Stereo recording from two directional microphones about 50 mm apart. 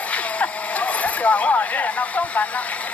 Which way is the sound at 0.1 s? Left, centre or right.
Left.